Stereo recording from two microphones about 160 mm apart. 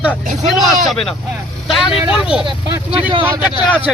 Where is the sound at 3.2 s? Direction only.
10° right (ahead or behind).